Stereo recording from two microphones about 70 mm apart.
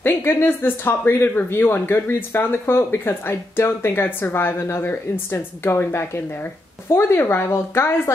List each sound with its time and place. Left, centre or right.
0.0 s speech: left